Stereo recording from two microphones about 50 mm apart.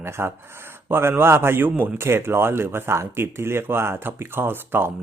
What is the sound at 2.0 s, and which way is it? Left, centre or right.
Speech, right.